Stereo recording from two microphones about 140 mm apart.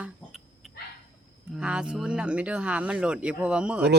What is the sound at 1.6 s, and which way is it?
Speech, 5° right (ahead or behind).